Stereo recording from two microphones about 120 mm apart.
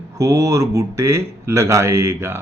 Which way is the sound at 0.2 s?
25° right (ahead or behind).